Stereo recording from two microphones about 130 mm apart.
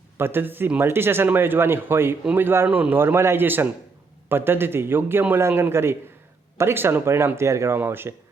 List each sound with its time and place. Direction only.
0.2 s speech: 15° right (ahead or behind)